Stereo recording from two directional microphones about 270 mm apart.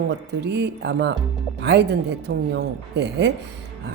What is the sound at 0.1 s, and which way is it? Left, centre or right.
Speech, right.